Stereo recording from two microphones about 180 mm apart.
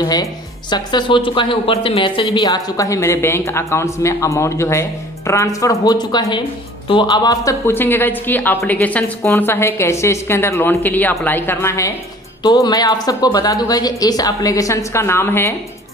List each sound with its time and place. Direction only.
0.1 s speech: 20° left (ahead or behind)